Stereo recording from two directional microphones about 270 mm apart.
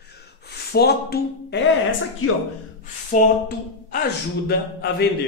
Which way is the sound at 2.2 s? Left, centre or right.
Left.